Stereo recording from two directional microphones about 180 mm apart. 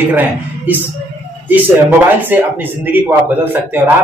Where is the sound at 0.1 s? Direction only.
10° right (ahead or behind).